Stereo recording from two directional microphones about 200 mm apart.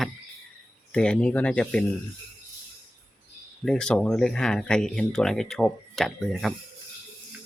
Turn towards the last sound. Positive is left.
turn(degrees=0)  # may be behind; listen again after turning